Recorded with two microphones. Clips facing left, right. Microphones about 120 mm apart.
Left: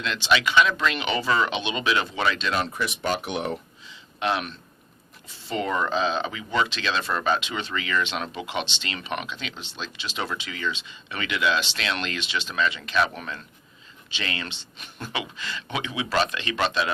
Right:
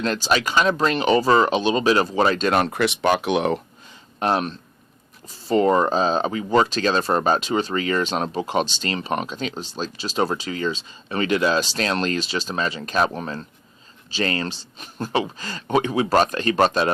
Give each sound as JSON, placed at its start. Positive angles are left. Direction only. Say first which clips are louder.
{"t": 0.0, "sound": "speech", "louder": "right 2 dB", "side_deg": -40}
{"t": 3.8, "sound": "a sound", "louder": "right 4 dB", "side_deg": -40}
{"t": 5.3, "sound": "speech", "louder": "right 9 dB", "side_deg": -40}